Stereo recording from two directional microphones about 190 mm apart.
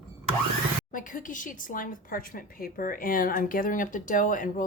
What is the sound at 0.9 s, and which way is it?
Speech, 45° left (ahead or behind).